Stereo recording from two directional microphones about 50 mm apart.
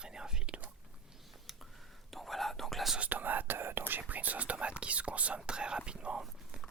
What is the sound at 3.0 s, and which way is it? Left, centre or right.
Speech, right.